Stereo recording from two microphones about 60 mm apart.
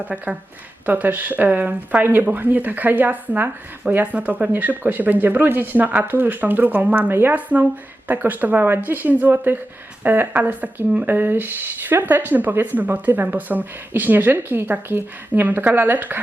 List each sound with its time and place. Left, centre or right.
0.0 s speech: right
7.5 s speech: right